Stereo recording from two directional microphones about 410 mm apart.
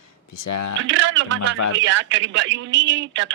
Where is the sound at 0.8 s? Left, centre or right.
Right.